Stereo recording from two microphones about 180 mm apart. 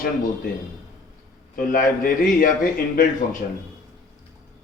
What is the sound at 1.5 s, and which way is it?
A man's voice, 50° left (ahead or behind).